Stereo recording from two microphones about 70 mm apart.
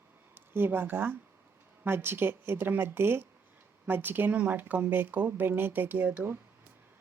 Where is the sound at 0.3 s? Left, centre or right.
Right.